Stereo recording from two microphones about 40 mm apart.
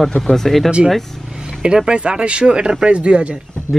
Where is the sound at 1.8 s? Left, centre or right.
Right.